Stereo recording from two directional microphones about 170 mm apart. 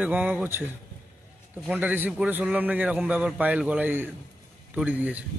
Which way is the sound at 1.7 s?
10° right (ahead or behind).